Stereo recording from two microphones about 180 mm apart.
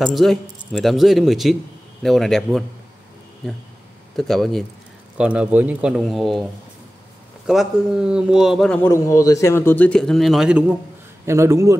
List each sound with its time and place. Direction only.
0.0 s a man's voice: centre (ahead or behind)
4.2 s a man's voice: centre (ahead or behind)
7.4 s a man's voice: 5° right (ahead or behind)
11.2 s a man's voice: 15° right (ahead or behind)